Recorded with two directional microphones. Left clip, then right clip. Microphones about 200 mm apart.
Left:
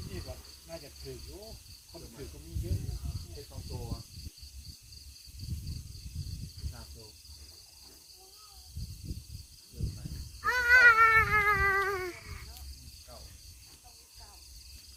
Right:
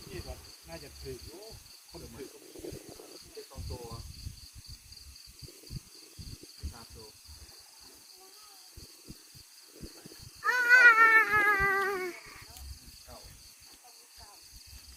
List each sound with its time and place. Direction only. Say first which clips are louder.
10.4 s cat: right 1 dB; 40° right (ahead or behind)